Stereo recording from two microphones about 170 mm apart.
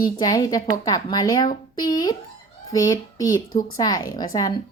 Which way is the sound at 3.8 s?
25° left (ahead or behind).